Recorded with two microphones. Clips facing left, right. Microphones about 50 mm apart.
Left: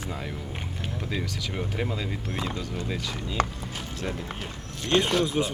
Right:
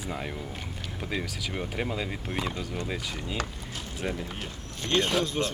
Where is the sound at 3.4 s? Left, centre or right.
Left.